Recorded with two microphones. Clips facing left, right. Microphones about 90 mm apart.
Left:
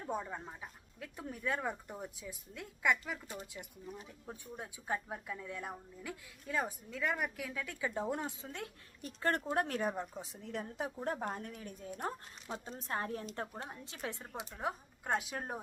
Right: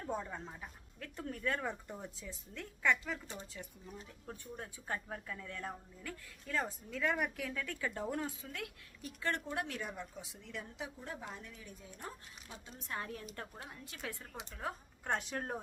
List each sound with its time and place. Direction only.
0.0 s a woman's voice: 10° left (ahead or behind); by 11.9 s 50° left (ahead or behind)
12.6 s a woman's voice: 35° left (ahead or behind)
14.5 s speech: 10° left (ahead or behind)